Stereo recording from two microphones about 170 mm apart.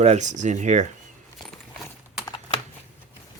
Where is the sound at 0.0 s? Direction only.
45° right (ahead or behind).